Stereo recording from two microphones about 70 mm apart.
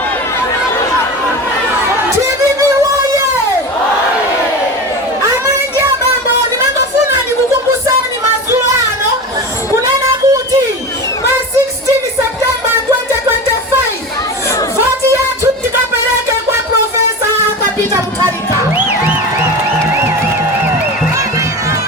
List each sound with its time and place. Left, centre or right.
9.8 s music: right